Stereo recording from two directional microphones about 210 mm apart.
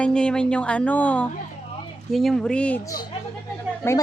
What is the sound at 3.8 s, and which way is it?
Speech, 10° left (ahead or behind).